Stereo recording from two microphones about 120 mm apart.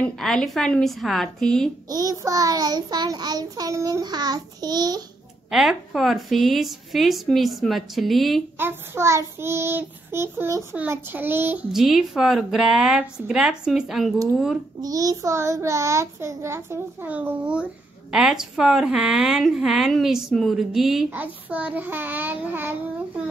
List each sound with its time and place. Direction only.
0.0 s a woman's voice: 5° left (ahead or behind)
1.9 s child singing: 30° right (ahead or behind)
5.5 s a woman's voice: 5° right (ahead or behind)
8.5 s child singing: 20° right (ahead or behind)
11.7 s a woman's voice: centre (ahead or behind)
14.8 s child singing: 30° right (ahead or behind); by 17.6 s 10° right (ahead or behind)
18.1 s a woman's voice: 5° right (ahead or behind)
21.1 s child singing: 15° right (ahead or behind)